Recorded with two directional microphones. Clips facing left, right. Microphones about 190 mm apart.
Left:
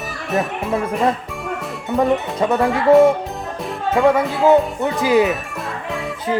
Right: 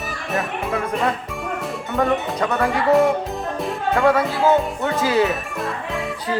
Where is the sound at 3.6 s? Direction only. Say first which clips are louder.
Left 2 dB; centre (ahead or behind).